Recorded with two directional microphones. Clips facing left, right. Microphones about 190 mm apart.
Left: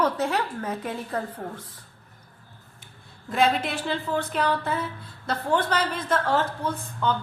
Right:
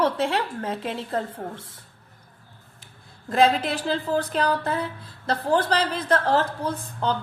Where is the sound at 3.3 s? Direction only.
35° right (ahead or behind).